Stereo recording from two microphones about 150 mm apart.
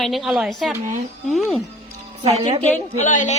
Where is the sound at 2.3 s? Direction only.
40° right (ahead or behind).